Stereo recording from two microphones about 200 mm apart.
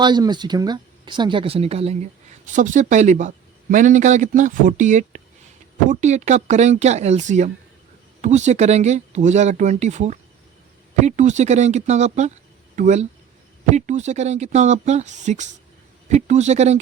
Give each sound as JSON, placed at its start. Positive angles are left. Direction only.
{"t": 0.0, "sound": "speech", "side_deg": -20}